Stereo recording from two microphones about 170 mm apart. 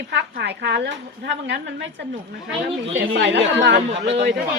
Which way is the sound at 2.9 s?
90° right.